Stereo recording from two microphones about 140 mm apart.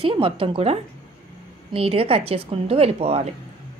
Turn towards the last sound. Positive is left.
turn(degrees=-45)  # may be behind; listen again after turning